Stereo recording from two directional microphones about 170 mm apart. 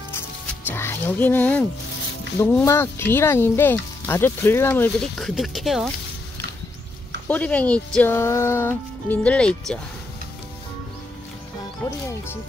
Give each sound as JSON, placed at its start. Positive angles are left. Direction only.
{"t": 0.7, "sound": "speech", "side_deg": 15}
{"t": 5.1, "sound": "speech", "side_deg": 0}
{"t": 7.2, "sound": "speech", "side_deg": 10}
{"t": 11.8, "sound": "speech", "side_deg": 15}